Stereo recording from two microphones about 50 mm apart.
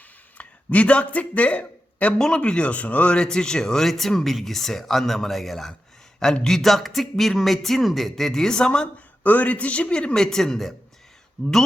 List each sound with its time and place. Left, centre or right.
0.3 s speech: left
2.1 s speech: centre
2.4 s a man's voice: left
3.2 s speech: centre
9.2 s a man's voice: left
10.2 s speech: centre